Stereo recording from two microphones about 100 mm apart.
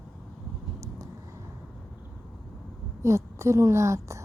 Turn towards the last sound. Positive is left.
turn(degrees=-30)  # may be behind; listen again after turning